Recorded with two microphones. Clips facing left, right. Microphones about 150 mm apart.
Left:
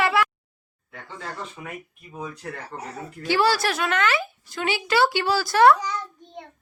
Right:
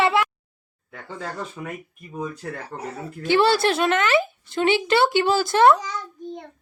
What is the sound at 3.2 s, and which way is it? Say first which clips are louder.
A woman's voice: right 3 dB; 20° right (ahead or behind).